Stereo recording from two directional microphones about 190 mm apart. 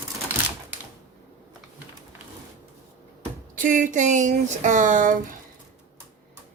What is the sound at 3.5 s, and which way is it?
Speech, 45° right (ahead or behind).